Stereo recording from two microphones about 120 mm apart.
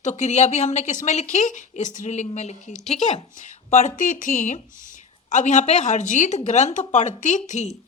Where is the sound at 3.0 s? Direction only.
85° left.